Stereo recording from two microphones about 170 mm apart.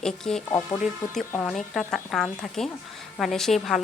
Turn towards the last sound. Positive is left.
turn(degrees=0)  # may be behind; listen again after turning